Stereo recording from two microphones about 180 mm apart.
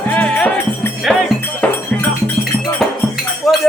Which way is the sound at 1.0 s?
Centre (ahead or behind).